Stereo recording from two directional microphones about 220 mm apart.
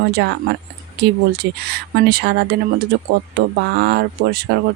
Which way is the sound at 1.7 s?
45° right (ahead or behind).